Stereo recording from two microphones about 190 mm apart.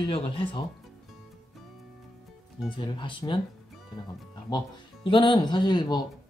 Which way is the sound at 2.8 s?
25° left (ahead or behind).